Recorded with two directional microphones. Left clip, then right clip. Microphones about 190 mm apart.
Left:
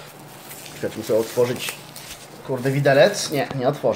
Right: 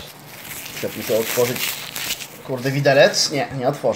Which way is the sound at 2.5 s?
5° right (ahead or behind).